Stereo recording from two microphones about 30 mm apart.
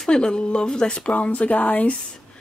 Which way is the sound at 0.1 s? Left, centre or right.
Left.